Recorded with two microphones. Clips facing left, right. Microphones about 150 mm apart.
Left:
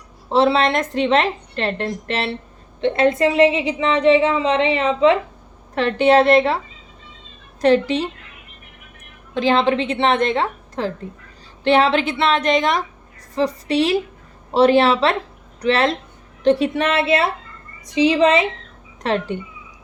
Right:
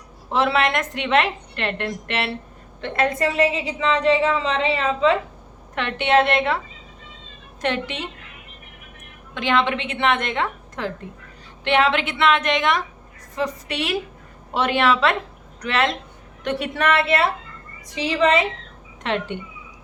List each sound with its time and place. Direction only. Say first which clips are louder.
0.3 s a woman's voice: left 4 dB; 30° left (ahead or behind)
5.7 s a woman's voice: left 5 dB; 35° left (ahead or behind)
7.6 s a woman's voice: left 10 dB; 35° left (ahead or behind)
9.3 s a woman's voice: left 5 dB; 35° left (ahead or behind)
19.0 s a woman's voice: left 4 dB; 35° left (ahead or behind)